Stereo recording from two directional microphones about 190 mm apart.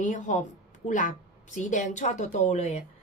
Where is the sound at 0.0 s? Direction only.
40° left (ahead or behind).